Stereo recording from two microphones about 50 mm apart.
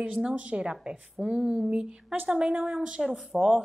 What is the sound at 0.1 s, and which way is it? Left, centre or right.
A woman's voice, centre.